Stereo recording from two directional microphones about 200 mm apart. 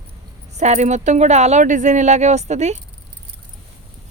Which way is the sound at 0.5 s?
35° right (ahead or behind).